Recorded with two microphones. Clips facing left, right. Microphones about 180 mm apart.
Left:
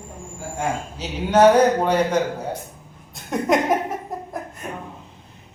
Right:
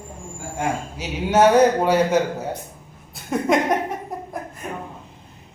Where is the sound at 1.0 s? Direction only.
10° right (ahead or behind).